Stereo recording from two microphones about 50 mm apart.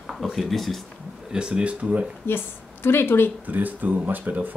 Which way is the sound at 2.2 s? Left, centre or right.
Left.